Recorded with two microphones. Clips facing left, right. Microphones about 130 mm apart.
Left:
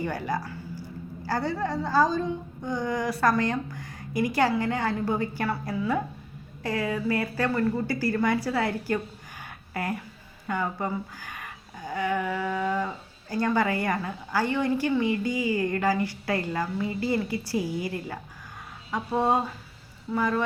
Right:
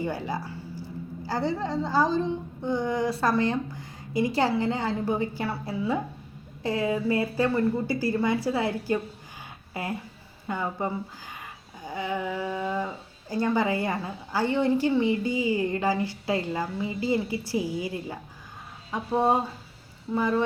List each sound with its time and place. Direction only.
0.0 s speech: 20° right (ahead or behind)
10.4 s a woman's voice: 20° right (ahead or behind)